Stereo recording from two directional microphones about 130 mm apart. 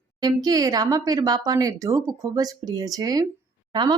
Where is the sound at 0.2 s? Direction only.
30° right (ahead or behind).